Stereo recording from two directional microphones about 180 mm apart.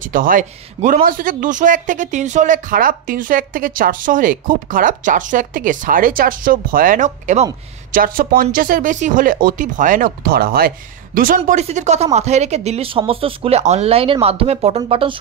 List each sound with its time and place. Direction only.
0.0 s speech: 50° right (ahead or behind); by 15.1 s 30° right (ahead or behind)